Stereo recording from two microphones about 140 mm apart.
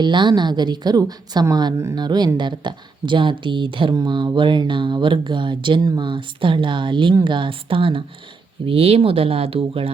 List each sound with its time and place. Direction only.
0.0 s speech: 35° right (ahead or behind)